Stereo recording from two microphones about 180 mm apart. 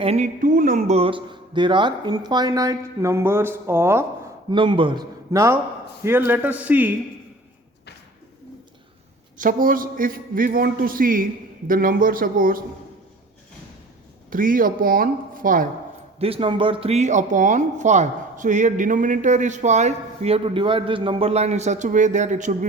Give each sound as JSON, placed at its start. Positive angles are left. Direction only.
{"t": 0.0, "sound": "speech", "side_deg": -35}
{"t": 0.4, "sound": "speech", "side_deg": -45}
{"t": 4.5, "sound": "a man's voice", "side_deg": -30}
{"t": 9.4, "sound": "a man's voice", "side_deg": -50}
{"t": 14.3, "sound": "a man's voice", "side_deg": -50}
{"t": 16.1, "sound": "speech", "side_deg": -30}